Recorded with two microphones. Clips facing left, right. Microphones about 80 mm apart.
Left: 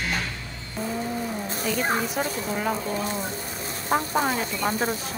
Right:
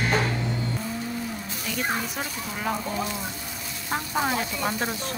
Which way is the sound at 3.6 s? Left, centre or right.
Left.